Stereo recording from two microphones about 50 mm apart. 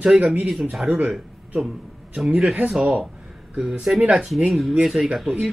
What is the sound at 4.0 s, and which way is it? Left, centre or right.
Speech, right.